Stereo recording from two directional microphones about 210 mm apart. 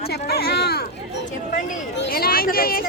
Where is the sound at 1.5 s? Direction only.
40° left (ahead or behind).